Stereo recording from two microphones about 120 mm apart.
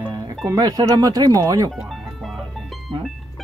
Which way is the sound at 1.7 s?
Centre (ahead or behind).